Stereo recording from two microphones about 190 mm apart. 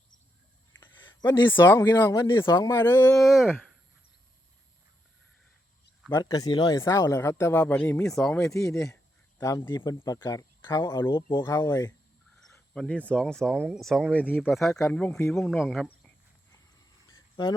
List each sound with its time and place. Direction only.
1.2 s speech: 15° left (ahead or behind)
3.2 s speech: centre (ahead or behind)
6.1 s speech: 15° left (ahead or behind); by 8.9 s centre (ahead or behind)
9.4 s speech: 15° left (ahead or behind)
12.7 s speech: 5° left (ahead or behind)
17.2 s cricket: 20° left (ahead or behind)